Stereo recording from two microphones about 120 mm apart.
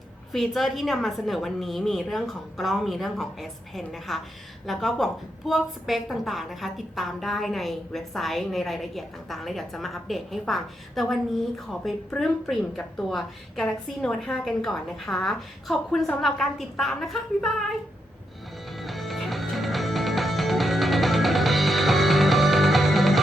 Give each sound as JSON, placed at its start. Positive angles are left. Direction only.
{"t": 0.3, "sound": "a woman's voice", "side_deg": 0}
{"t": 18.7, "sound": "music", "side_deg": 0}